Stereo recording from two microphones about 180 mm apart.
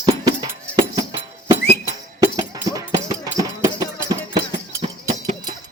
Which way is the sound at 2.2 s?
20° right (ahead or behind).